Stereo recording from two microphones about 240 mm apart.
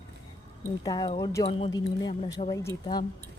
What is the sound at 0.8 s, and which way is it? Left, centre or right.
Speech, centre.